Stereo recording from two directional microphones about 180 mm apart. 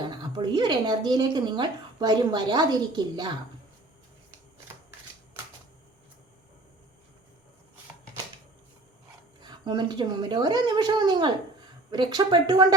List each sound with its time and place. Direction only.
0.0 s speech: 25° right (ahead or behind)
9.4 s speech: 25° right (ahead or behind)